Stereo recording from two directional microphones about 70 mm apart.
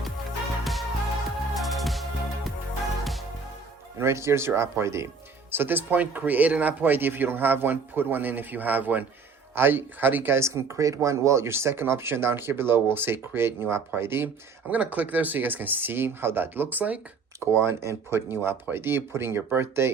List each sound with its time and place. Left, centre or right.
0.6 s music: centre
4.0 s speech: right
5.5 s speech: right
10.3 s speech: right